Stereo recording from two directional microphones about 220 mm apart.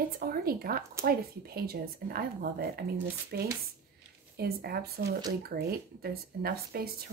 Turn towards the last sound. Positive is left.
turn(degrees=-45)  # may be behind; listen again after turning